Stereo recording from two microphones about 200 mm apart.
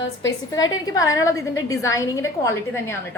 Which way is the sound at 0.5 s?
20° left (ahead or behind).